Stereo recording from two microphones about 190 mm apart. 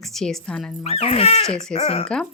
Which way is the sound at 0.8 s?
30° left (ahead or behind).